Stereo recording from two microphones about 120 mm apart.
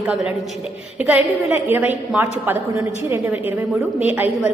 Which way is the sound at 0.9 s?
15° right (ahead or behind).